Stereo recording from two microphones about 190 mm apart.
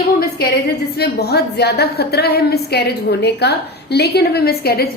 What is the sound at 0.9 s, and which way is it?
A woman's voice, 60° left (ahead or behind).